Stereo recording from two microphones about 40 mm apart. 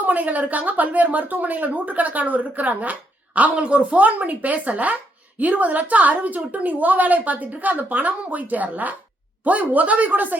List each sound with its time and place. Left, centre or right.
0.0 s a woman's voice: right